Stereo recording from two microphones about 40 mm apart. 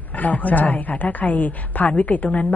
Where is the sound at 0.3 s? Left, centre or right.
Left.